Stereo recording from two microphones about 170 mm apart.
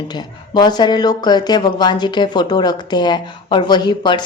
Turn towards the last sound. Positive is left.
turn(degrees=25)  # may be behind; listen again after turning